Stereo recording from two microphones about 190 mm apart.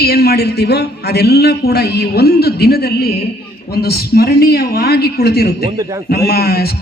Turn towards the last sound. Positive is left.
turn(degrees=55)  # may be behind; listen again after turning